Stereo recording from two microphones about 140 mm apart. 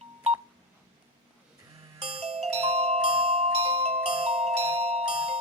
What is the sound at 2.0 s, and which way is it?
Music, 45° right (ahead or behind).